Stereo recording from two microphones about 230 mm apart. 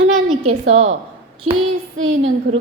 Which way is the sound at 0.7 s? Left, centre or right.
Right.